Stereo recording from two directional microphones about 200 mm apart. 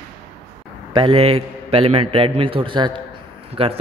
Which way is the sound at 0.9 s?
25° right (ahead or behind).